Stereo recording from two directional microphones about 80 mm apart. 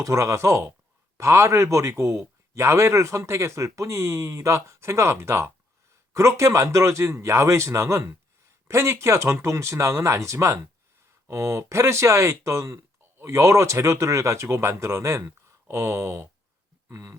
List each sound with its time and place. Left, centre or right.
0.0 s speech: right